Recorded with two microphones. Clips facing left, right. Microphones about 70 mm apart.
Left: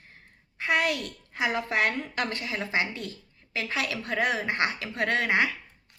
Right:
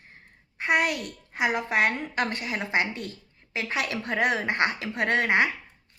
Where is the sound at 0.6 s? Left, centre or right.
Right.